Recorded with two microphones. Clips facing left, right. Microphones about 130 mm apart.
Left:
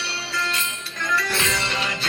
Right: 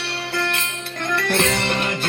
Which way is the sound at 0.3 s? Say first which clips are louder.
Right 3 dB; 60° right (ahead or behind).